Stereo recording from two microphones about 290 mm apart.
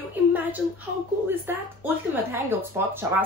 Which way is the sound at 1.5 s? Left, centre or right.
Centre.